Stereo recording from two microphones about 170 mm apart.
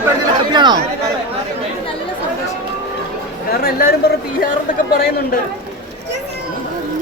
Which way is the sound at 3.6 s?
60° left (ahead or behind).